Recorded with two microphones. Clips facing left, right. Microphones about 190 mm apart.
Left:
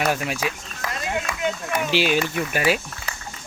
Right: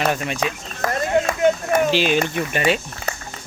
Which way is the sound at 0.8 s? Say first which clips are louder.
Right 9 dB; 50° right (ahead or behind).